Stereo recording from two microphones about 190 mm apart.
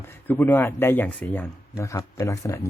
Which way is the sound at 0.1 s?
10° left (ahead or behind).